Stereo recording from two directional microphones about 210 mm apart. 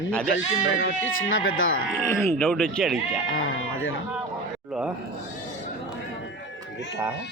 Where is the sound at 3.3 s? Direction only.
70° left (ahead or behind).